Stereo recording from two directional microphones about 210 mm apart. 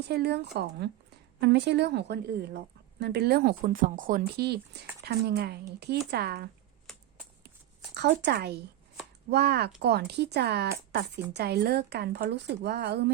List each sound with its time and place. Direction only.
0.1 s a woman's voice: 50° right (ahead or behind)
6.9 s a sound: centre (ahead or behind)
7.9 s a woman's voice: 55° right (ahead or behind)